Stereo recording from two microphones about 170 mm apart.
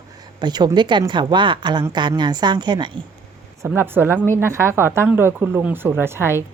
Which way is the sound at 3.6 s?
15° right (ahead or behind).